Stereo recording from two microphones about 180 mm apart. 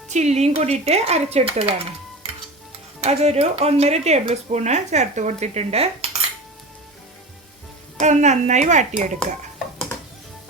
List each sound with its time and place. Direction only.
0.1 s speech: 40° right (ahead or behind)
7.9 s speech: 40° right (ahead or behind)